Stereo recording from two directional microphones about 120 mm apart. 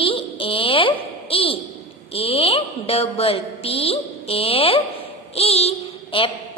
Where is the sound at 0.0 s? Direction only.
50° left (ahead or behind).